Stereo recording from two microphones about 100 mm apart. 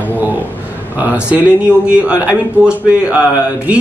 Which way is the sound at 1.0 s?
15° right (ahead or behind).